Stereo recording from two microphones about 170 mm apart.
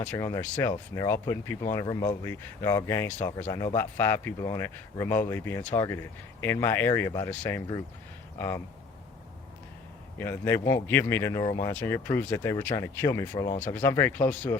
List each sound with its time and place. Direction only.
0.1 s speech: 20° left (ahead or behind)
1.8 s speech: 25° left (ahead or behind)
2.2 s speech: 15° left (ahead or behind)
10.2 s speech: 15° left (ahead or behind)